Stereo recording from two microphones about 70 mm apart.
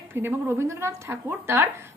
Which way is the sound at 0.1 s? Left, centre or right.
Right.